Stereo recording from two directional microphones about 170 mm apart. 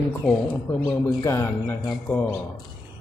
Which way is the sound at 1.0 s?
15° left (ahead or behind).